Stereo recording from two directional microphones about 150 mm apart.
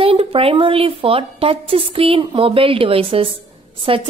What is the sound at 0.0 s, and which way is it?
A woman's voice, 40° right (ahead or behind).